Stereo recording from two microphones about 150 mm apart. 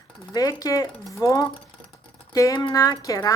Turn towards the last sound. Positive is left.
turn(degrees=25)  # may be behind; listen again after turning